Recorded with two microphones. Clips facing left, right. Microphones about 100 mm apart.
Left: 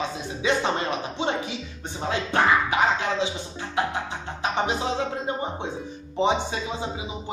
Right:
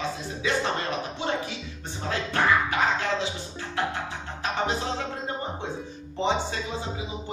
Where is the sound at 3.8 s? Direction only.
15° left (ahead or behind).